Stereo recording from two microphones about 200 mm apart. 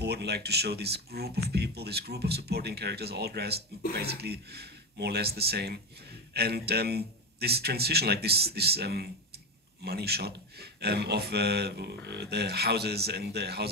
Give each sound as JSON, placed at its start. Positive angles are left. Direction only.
{"t": 0.0, "sound": "a man's voice", "side_deg": -55}